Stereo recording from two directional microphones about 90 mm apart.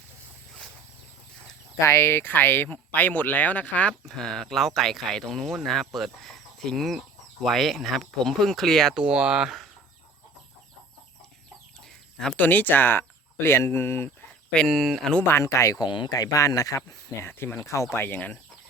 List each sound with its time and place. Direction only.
1.8 s speech: 35° left (ahead or behind); by 3.9 s 15° left (ahead or behind)
4.0 s speech: 5° left (ahead or behind)
9.0 s speech: 10° right (ahead or behind)
12.4 s speech: 20° left (ahead or behind)
14.7 s speech: centre (ahead or behind)
15.3 s speech: 30° left (ahead or behind)
15.8 s speech: 55° left (ahead or behind)
16.1 s speech: 40° left (ahead or behind)
17.2 s speech: 25° left (ahead or behind)